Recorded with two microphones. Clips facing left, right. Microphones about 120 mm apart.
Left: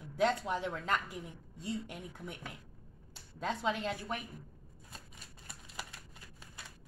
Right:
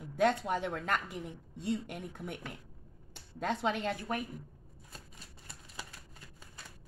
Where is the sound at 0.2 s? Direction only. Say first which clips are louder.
Right 2 dB; 55° right (ahead or behind).